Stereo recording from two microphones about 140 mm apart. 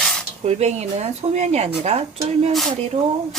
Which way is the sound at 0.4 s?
55° right (ahead or behind).